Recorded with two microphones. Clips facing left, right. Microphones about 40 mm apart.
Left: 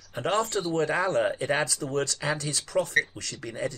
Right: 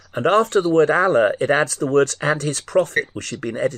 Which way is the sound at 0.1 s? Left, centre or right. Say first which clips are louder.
Right 10 dB; right.